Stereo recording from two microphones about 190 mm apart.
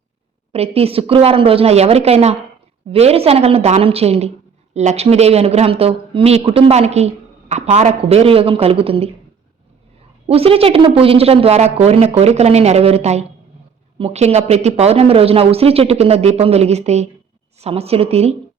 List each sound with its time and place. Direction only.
0.5 s speech: 30° right (ahead or behind)
10.2 s speech: 30° right (ahead or behind)